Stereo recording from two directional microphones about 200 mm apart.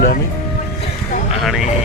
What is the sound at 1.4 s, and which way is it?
Vehicle, centre (ahead or behind).